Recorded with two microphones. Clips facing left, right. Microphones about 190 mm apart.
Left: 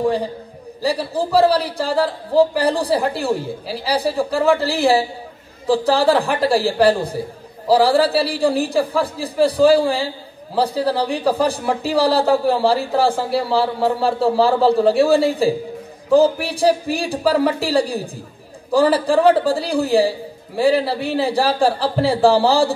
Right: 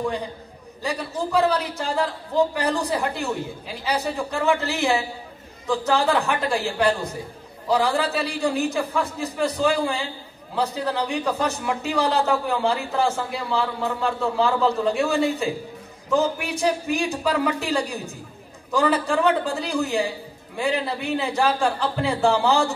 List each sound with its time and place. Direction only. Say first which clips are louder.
0.0 s a man's voice: left 7 dB; 35° left (ahead or behind)